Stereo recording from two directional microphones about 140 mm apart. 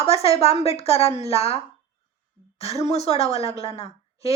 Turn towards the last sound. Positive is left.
turn(degrees=45)  # may be behind; listen again after turning